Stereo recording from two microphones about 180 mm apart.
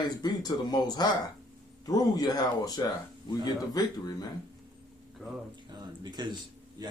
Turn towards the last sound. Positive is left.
turn(degrees=-25)  # may be behind; listen again after turning